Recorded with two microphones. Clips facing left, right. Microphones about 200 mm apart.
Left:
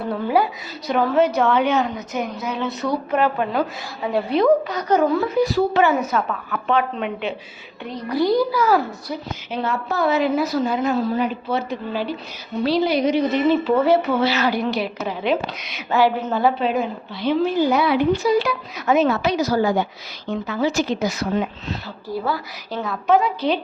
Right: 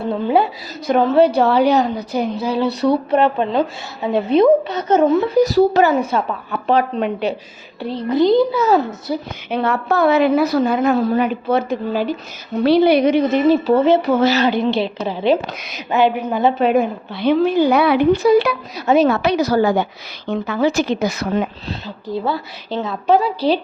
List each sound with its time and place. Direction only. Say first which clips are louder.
0.0 s a woman's voice: right 3 dB; 25° right (ahead or behind)
5.4 s a woman's voice: right 5 dB; 40° right (ahead or behind); by 9.1 s 25° right (ahead or behind)
9.5 s a woman's voice: right 6 dB; 60° right (ahead or behind)
12.6 s a woman's voice: right 6 dB; 60° right (ahead or behind)
14.0 s speech: right 5 dB; 45° right (ahead or behind)
14.4 s speech: right 4 dB; 25° right (ahead or behind)
15.9 s speech: right 2 dB; 20° right (ahead or behind)
16.6 s a woman's voice: right 6 dB; 55° right (ahead or behind)
21.8 s speech: right 4 dB; 25° right (ahead or behind)